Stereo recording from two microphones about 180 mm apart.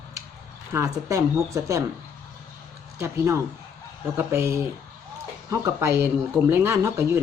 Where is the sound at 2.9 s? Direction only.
15° right (ahead or behind).